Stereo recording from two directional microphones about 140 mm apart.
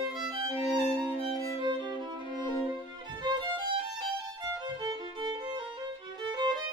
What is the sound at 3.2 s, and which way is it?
Music, 30° right (ahead or behind).